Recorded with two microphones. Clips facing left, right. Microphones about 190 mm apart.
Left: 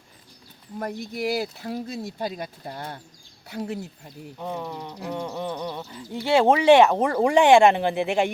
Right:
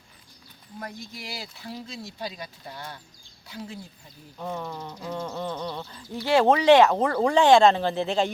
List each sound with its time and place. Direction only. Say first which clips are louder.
0.8 s speech: left 10 dB; 60° left (ahead or behind)
3.7 s speech: left 8 dB; 70° left (ahead or behind)
4.4 s speech: left 1 dB; 15° left (ahead or behind)
6.4 s speech: left 1 dB; 10° left (ahead or behind)